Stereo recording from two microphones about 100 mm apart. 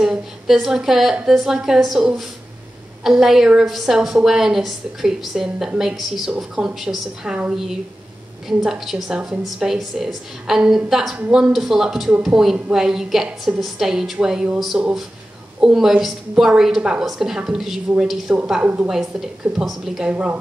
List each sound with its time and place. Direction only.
0.0 s a woman's voice: 5° right (ahead or behind)